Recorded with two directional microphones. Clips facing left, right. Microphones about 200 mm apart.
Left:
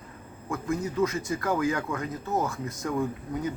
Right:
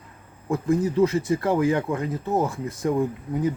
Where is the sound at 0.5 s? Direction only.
35° right (ahead or behind).